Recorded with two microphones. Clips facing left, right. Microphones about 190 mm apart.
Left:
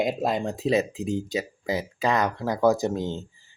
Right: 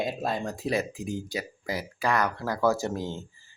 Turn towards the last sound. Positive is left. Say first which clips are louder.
# left 4 dB
turn(degrees=20)  # may be behind; listen again after turning